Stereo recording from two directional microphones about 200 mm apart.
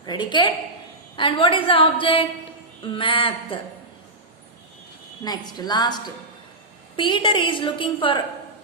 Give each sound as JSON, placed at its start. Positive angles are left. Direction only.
{"t": 0.0, "sound": "a woman's voice", "side_deg": 20}
{"t": 5.2, "sound": "a woman's voice", "side_deg": 20}